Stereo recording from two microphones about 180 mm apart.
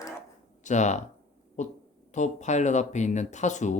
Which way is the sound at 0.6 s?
40° left (ahead or behind).